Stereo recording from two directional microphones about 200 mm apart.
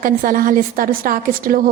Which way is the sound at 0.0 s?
45° right (ahead or behind).